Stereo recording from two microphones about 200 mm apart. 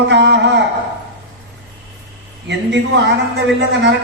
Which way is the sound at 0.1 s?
60° right (ahead or behind).